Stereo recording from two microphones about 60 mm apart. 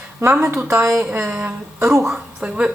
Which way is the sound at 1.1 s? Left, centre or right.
Right.